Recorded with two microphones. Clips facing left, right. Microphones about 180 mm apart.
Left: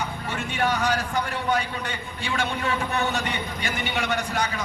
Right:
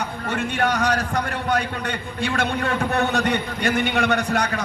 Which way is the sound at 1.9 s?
55° right (ahead or behind).